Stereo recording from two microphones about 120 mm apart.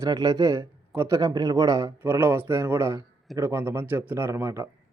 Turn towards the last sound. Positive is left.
turn(degrees=-20)  # may be behind; listen again after turning